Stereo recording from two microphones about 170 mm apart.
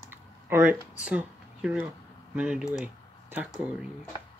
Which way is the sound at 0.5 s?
15° right (ahead or behind).